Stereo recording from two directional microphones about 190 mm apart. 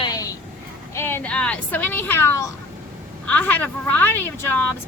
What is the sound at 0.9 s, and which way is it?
Speech, 10° left (ahead or behind).